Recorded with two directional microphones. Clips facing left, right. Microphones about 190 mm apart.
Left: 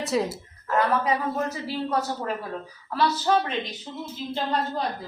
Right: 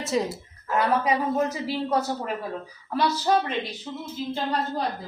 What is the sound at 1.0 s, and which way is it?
Speech, 15° right (ahead or behind).